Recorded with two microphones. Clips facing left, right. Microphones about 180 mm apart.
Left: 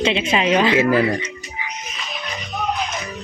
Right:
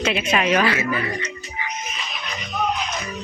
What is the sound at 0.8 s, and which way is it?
Speech, 90° left.